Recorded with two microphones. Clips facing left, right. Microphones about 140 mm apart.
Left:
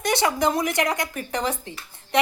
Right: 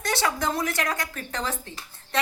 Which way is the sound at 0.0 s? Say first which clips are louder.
Left 5 dB; 15° left (ahead or behind).